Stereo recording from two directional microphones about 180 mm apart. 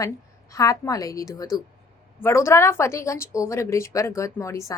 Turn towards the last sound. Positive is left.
turn(degrees=15)  # may be behind; listen again after turning